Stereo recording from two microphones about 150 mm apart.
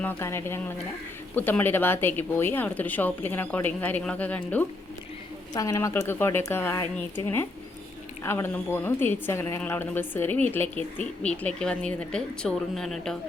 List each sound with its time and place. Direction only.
0.0 s speech: 15° left (ahead or behind)
5.5 s speech: 20° left (ahead or behind)
8.2 s speech: 15° left (ahead or behind)